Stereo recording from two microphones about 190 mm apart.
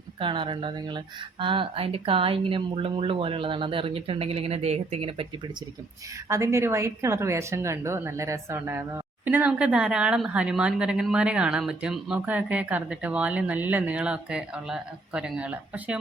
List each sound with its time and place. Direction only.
0.2 s speech: 25° right (ahead or behind)
6.2 s a woman's voice: 15° right (ahead or behind)